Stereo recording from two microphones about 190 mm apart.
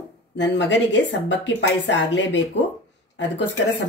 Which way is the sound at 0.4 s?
70° left (ahead or behind).